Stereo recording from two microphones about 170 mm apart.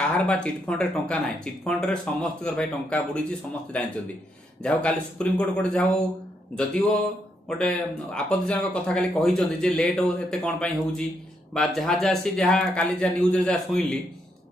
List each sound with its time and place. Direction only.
0.2 s speech: 5° left (ahead or behind)